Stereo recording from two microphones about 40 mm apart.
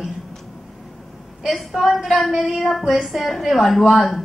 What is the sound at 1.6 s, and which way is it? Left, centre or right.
A woman's voice, centre.